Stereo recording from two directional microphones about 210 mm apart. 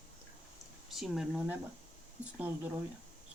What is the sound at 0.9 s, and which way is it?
Speech, centre (ahead or behind).